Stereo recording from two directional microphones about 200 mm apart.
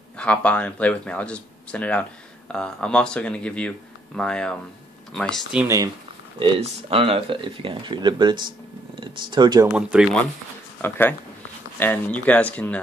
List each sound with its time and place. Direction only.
0.2 s speech: 5° left (ahead or behind)
6.4 s speech: 30° right (ahead or behind)
9.7 s speech: 5° right (ahead or behind)
10.8 s speech: 10° left (ahead or behind)